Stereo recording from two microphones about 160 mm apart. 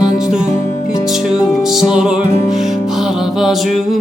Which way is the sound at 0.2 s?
5° right (ahead or behind).